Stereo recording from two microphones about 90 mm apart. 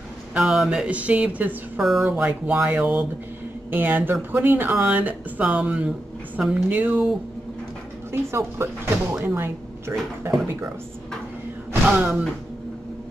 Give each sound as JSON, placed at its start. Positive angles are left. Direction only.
{"t": 0.3, "sound": "speech", "side_deg": -10}
{"t": 1.8, "sound": "speech", "side_deg": 0}
{"t": 2.0, "sound": "speech", "side_deg": -15}
{"t": 8.1, "sound": "speech", "side_deg": -30}
{"t": 11.9, "sound": "speech", "side_deg": -20}